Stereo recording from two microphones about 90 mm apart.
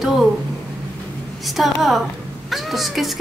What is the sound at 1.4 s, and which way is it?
A woman's voice, centre (ahead or behind).